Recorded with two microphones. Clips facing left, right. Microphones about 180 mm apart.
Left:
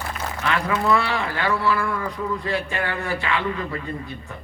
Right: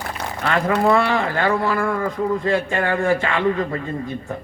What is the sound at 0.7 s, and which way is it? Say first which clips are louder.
A man's voice: right 5 dB; 50° right (ahead or behind).